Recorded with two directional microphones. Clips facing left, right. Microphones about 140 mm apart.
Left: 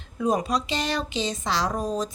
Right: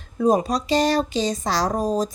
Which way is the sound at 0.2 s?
35° right (ahead or behind).